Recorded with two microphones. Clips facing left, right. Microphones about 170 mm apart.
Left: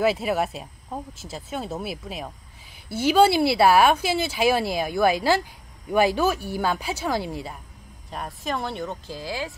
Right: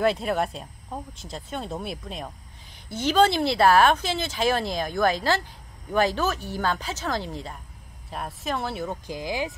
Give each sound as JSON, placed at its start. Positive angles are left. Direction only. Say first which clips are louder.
{"t": 0.0, "sound": "speech", "louder": "left 1 dB", "side_deg": 5}
{"t": 8.1, "sound": "speech", "louder": "left 1 dB", "side_deg": 0}
{"t": 9.0, "sound": "speech", "louder": "right 2 dB", "side_deg": -15}